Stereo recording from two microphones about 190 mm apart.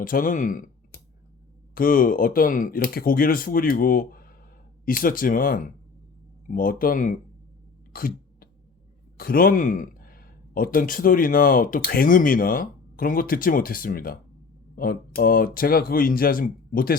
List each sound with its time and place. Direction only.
0.0 s speech: 45° left (ahead or behind)
7.9 s a sound: 50° left (ahead or behind)
9.1 s speech: 50° left (ahead or behind)